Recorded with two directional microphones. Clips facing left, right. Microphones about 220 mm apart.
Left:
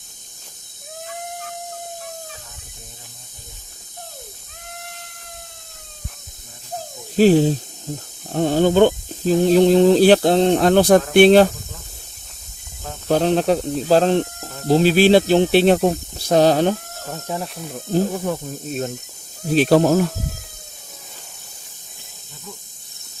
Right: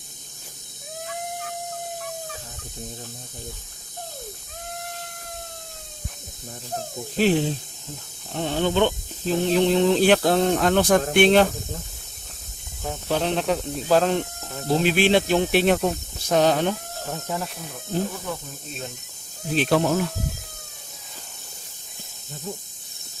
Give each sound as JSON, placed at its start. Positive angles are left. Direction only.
{"t": 7.2, "sound": "speech", "side_deg": 40}
{"t": 13.1, "sound": "speech", "side_deg": 40}
{"t": 17.2, "sound": "speech", "side_deg": 25}
{"t": 17.9, "sound": "speech", "side_deg": 45}
{"t": 19.5, "sound": "speech", "side_deg": 40}